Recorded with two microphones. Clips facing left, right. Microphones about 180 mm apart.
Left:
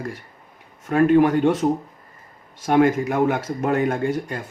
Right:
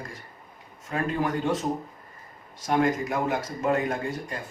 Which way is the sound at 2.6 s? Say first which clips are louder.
Left 7 dB; 60° left (ahead or behind).